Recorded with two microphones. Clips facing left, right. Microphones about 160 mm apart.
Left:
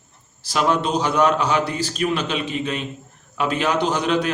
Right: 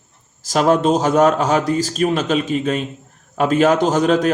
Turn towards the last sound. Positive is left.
turn(degrees=-45)  # may be behind; listen again after turning